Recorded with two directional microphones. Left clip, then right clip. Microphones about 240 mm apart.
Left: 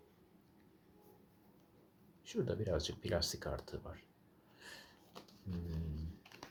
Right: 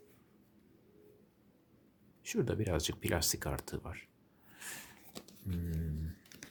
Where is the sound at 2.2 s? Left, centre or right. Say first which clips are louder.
Right 3 dB; right.